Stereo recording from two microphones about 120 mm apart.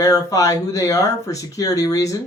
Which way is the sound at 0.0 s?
30° left (ahead or behind).